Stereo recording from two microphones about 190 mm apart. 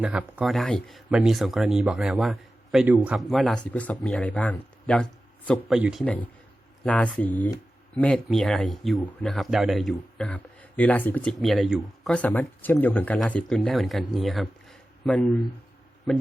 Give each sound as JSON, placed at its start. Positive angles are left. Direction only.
{"t": 0.0, "sound": "a man's voice", "side_deg": -5}